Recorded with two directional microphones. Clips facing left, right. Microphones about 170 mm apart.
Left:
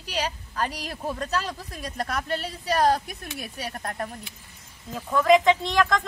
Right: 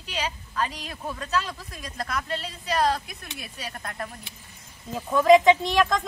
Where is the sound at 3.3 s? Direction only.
35° left (ahead or behind).